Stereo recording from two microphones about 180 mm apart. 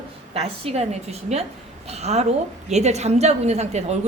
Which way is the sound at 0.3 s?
35° right (ahead or behind).